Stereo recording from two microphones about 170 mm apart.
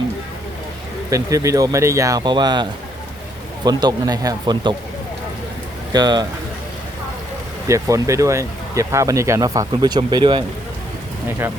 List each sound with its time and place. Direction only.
1.1 s speech: 20° right (ahead or behind)
5.9 s speech: 25° right (ahead or behind)
7.7 s speech: 20° right (ahead or behind)
11.3 s speech: 15° right (ahead or behind)